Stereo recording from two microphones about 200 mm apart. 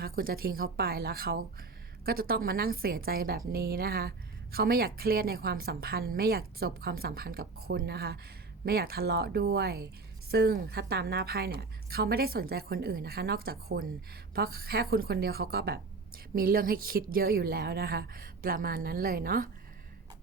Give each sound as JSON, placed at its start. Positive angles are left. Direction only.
{"t": 0.0, "sound": "a woman's voice", "side_deg": -50}